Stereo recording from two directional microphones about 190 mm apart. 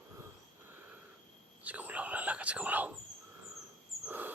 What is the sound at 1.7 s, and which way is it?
Whispering, 10° right (ahead or behind).